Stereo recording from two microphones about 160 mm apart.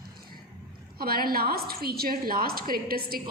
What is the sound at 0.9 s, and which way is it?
A woman's voice, 70° right (ahead or behind).